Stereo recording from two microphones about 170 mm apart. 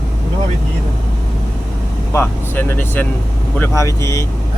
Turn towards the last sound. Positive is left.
turn(degrees=15)  # may be behind; listen again after turning